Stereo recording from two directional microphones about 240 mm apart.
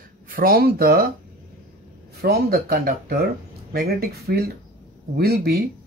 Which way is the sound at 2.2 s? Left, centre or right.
Right.